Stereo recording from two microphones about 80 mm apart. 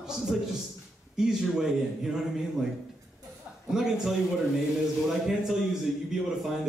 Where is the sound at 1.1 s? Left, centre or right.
Centre.